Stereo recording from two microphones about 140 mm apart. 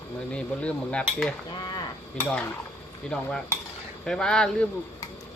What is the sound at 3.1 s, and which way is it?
Speech, 5° left (ahead or behind).